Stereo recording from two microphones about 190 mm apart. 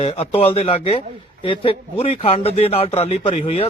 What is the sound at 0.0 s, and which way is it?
A man's voice, 30° left (ahead or behind).